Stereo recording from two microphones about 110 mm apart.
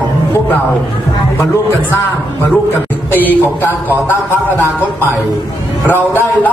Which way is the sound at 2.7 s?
15° left (ahead or behind).